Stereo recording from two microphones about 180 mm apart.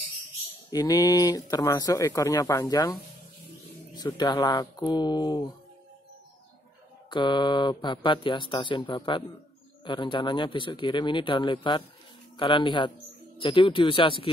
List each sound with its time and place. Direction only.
0.7 s speech: 20° left (ahead or behind)
7.1 s speech: 25° left (ahead or behind)